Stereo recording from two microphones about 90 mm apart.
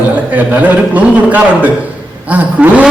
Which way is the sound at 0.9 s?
15° right (ahead or behind).